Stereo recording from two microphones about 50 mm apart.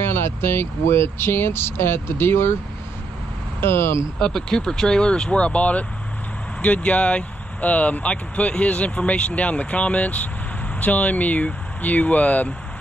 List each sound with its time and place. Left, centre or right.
0.0 s speech: left
3.6 s speech: left
4.2 s speech: centre; by 12.5 s left